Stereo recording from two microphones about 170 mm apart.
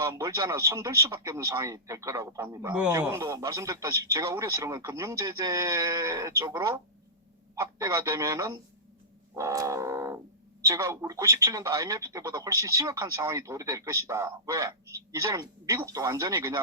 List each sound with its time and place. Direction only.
0.0 s speech: 15° right (ahead or behind)